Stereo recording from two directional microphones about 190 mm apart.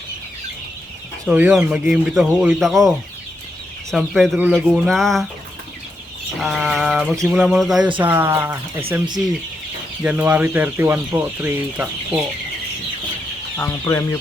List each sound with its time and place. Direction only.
1.2 s speech: 5° right (ahead or behind)
3.9 s speech: centre (ahead or behind)
6.4 s speech: centre (ahead or behind)
10.0 s speech: 5° right (ahead or behind)
13.6 s speech: 20° left (ahead or behind)